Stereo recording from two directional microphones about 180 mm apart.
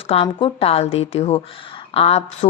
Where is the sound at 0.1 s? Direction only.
30° left (ahead or behind).